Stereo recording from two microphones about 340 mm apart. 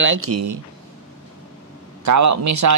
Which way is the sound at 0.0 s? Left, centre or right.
Right.